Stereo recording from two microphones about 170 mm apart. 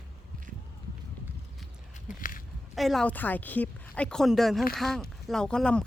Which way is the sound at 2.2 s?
55° left (ahead or behind).